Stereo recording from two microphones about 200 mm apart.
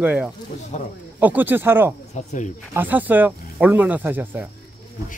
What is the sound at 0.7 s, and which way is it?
Speech, 35° left (ahead or behind).